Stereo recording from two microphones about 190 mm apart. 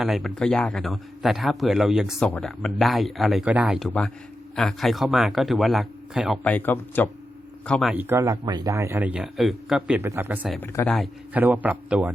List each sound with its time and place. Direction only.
0.0 s speech: centre (ahead or behind)
6.4 s speech: 10° left (ahead or behind)
7.7 s speech: centre (ahead or behind)
10.6 s speech: 5° left (ahead or behind)